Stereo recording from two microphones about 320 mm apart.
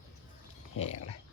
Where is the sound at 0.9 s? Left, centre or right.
Left.